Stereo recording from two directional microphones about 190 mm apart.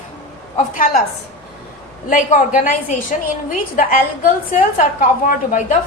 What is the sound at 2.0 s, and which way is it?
A woman's voice, 45° left (ahead or behind).